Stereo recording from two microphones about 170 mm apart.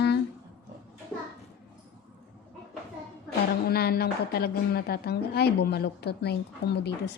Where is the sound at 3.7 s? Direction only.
70° left (ahead or behind).